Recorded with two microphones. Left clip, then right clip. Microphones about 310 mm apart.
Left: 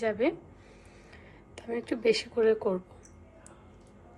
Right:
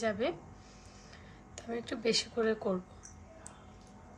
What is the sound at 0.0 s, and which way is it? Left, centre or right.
Speech, left.